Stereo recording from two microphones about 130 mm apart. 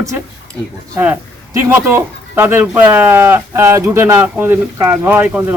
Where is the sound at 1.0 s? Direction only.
15° right (ahead or behind).